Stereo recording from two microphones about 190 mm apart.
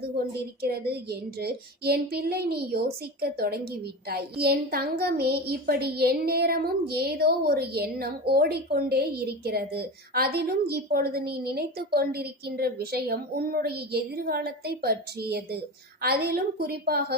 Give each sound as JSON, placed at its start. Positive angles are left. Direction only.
{"t": 0.0, "sound": "child singing", "side_deg": -55}